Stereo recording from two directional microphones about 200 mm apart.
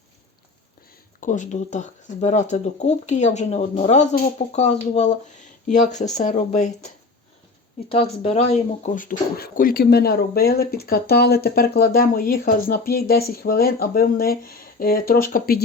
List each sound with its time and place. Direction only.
1.2 s speech: 40° left (ahead or behind)